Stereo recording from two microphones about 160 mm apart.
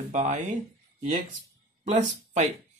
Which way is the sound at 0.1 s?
50° right (ahead or behind).